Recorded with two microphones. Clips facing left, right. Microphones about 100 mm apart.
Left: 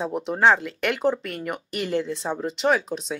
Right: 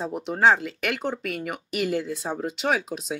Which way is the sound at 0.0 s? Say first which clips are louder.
Left 1 dB; centre (ahead or behind).